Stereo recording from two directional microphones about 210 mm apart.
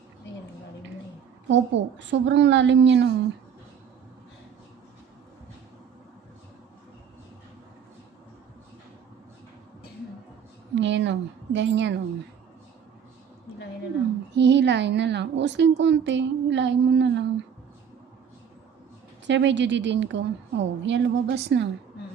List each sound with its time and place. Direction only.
1.5 s a woman's voice: 60° right (ahead or behind)
10.8 s a woman's voice: 60° right (ahead or behind)
14.3 s a woman's voice: 55° right (ahead or behind)
19.3 s a woman's voice: 55° right (ahead or behind)